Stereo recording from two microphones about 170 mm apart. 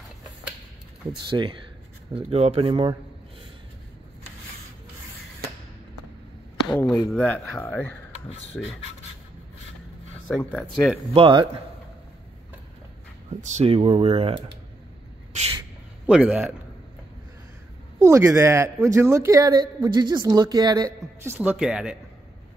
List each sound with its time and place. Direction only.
1.3 s speech: 30° right (ahead or behind)
6.7 s speech: 5° left (ahead or behind)
10.2 s speech: 5° left (ahead or behind)
11.1 s speech: 30° right (ahead or behind)
13.4 s speech: 40° right (ahead or behind)
15.3 s a sound: 40° right (ahead or behind)
16.1 s a man's voice: 5° right (ahead or behind)
17.9 s a man's voice: 15° right (ahead or behind)